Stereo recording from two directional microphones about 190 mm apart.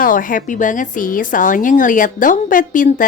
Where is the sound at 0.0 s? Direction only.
45° left (ahead or behind).